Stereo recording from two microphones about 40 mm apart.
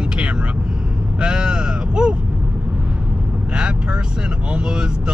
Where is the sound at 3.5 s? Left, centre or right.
Right.